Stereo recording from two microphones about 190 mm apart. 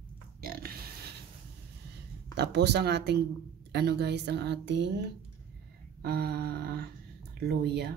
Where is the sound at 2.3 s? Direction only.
65° right (ahead or behind).